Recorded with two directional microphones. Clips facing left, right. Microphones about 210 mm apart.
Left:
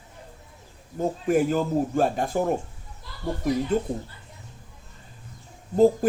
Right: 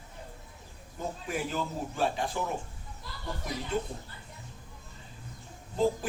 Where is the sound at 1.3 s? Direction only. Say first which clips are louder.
Left 12 dB; 50° left (ahead or behind).